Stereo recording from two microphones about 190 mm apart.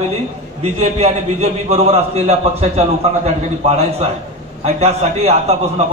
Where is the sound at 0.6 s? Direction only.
30° right (ahead or behind).